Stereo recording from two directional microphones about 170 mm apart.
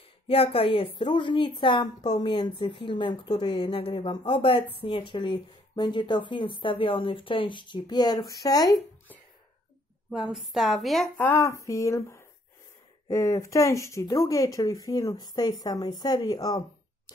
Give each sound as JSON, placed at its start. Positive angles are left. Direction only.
{"t": 0.3, "sound": "a woman's voice", "side_deg": 35}
{"t": 10.1, "sound": "a woman's voice", "side_deg": -5}
{"t": 11.1, "sound": "a woman's voice", "side_deg": 15}